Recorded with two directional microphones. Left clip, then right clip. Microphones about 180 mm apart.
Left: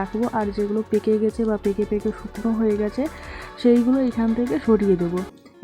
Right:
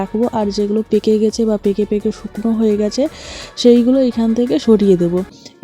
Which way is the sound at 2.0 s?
Centre (ahead or behind).